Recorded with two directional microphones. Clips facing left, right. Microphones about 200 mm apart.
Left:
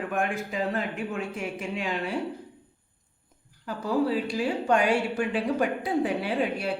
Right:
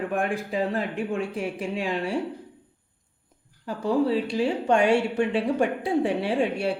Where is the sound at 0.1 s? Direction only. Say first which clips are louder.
Right 2 dB; 30° right (ahead or behind).